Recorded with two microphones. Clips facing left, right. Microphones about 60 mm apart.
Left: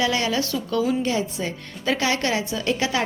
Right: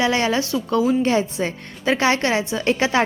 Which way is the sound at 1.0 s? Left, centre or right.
Right.